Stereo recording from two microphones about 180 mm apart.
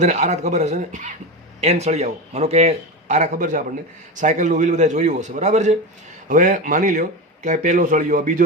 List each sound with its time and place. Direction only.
0.0 s a man's voice: 40° right (ahead or behind)